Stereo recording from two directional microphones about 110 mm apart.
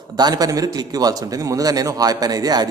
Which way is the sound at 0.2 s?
35° right (ahead or behind).